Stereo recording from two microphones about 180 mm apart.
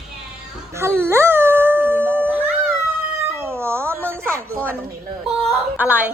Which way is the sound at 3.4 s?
15° right (ahead or behind).